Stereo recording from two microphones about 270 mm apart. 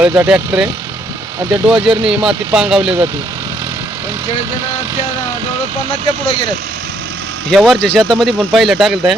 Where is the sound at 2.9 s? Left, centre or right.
Centre.